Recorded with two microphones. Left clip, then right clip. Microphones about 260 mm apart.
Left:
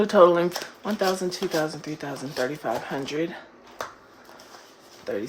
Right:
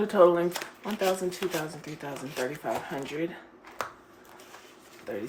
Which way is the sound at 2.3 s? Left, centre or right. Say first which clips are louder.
Left 4 dB; left.